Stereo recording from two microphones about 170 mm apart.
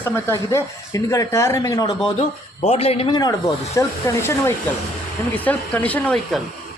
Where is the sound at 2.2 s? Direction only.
40° left (ahead or behind); by 6.2 s 10° left (ahead or behind).